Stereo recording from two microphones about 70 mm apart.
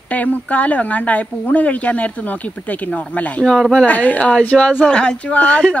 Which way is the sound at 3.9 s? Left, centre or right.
Left.